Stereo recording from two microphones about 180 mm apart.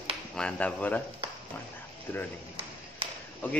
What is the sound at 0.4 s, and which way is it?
Speech, 5° left (ahead or behind).